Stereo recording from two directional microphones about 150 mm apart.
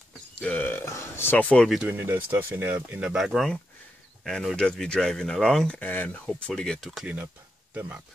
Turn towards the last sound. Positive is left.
turn(degrees=-15)  # may be behind; listen again after turning